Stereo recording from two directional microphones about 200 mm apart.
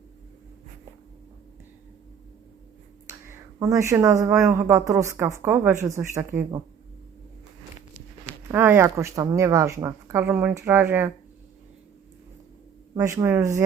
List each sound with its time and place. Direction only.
3.2 s speech: 15° right (ahead or behind)
8.4 s speech: 10° right (ahead or behind)
12.9 s speech: 20° right (ahead or behind)